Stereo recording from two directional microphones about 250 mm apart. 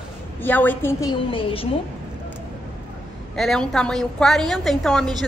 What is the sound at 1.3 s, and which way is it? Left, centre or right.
Speech, left.